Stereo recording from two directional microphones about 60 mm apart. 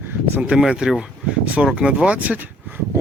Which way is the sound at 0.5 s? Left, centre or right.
Centre.